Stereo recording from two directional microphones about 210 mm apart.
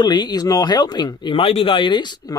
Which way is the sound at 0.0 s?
20° left (ahead or behind).